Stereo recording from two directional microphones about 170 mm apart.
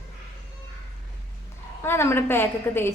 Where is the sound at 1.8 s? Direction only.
15° left (ahead or behind).